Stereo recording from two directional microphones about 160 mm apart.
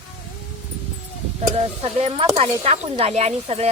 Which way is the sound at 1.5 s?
40° right (ahead or behind).